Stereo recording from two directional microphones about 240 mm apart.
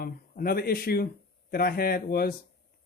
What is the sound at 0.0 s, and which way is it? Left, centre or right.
Speech, left.